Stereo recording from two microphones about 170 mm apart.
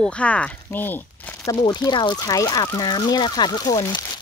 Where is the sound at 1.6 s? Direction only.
25° left (ahead or behind).